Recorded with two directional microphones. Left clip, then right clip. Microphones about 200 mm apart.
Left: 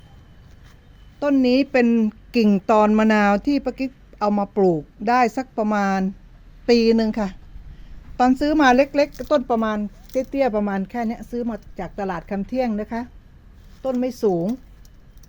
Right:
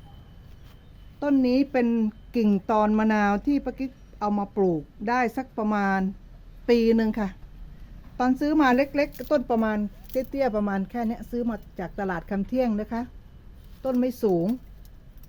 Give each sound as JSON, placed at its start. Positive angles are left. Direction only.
{"t": 1.2, "sound": "a woman's voice", "side_deg": 40}
{"t": 9.2, "sound": "speech", "side_deg": 15}